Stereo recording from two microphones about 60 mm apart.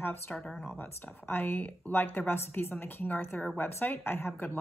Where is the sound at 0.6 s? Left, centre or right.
Left.